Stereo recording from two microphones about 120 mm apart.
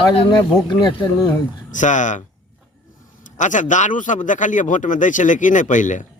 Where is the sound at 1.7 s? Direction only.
90° left.